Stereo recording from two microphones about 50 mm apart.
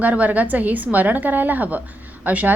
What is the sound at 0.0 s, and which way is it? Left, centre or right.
A woman's voice, right.